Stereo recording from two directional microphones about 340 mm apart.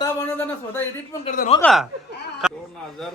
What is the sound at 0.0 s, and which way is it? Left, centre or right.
A man's voice, centre.